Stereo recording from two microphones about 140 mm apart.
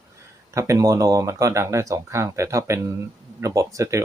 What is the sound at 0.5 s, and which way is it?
Speech, 25° right (ahead or behind).